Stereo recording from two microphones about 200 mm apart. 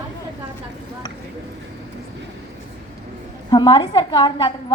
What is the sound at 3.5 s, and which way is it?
A woman's voice, 20° left (ahead or behind).